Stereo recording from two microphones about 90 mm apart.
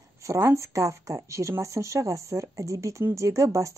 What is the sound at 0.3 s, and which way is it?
Speech, 35° right (ahead or behind).